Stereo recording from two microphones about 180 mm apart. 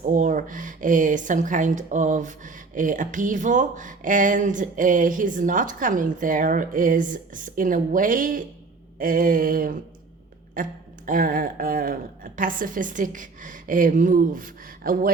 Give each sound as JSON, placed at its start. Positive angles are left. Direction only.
{"t": 0.0, "sound": "speech", "side_deg": -45}